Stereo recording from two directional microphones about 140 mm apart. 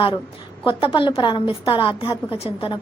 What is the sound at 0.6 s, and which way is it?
A woman's voice, 40° left (ahead or behind).